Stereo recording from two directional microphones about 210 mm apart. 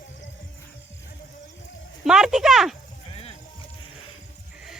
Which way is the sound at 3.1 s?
25° left (ahead or behind).